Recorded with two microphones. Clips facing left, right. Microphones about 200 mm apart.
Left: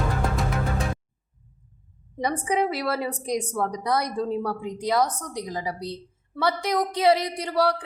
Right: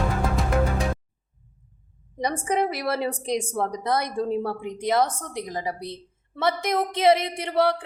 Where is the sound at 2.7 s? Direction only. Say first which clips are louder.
Right 1 dB; 20° right (ahead or behind).